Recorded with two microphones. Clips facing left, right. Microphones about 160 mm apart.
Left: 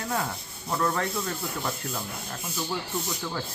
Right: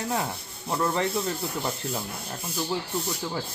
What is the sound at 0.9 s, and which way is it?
Speech, 20° right (ahead or behind).